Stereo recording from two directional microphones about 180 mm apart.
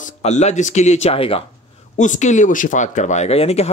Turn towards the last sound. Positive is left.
turn(degrees=35)  # may be behind; listen again after turning